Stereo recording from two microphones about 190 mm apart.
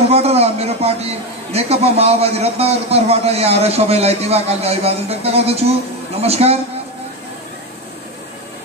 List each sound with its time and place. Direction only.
0.1 s a man's voice: 35° right (ahead or behind)